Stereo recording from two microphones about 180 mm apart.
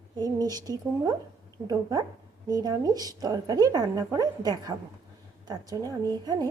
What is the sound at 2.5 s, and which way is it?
A woman's voice, 20° right (ahead or behind).